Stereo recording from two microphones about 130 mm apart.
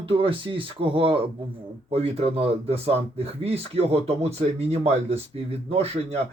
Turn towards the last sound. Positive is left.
turn(degrees=-55)  # may be behind; listen again after turning